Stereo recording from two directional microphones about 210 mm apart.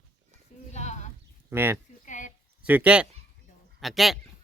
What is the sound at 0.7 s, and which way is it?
Sheep, 35° left (ahead or behind).